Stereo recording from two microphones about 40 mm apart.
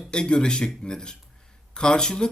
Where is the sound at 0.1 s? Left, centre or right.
Left.